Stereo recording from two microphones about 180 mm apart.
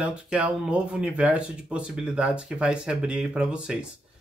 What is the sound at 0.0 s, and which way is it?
Speech, 5° right (ahead or behind).